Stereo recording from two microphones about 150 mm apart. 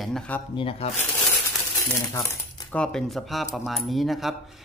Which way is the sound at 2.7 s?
5° left (ahead or behind).